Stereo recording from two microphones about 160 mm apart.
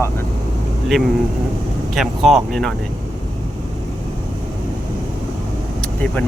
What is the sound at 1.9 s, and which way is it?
Speech, centre (ahead or behind).